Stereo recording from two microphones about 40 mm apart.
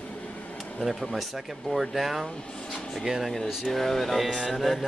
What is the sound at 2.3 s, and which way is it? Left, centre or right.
Air conditioning, left.